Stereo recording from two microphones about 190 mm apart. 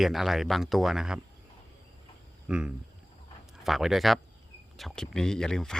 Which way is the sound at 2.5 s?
5° right (ahead or behind).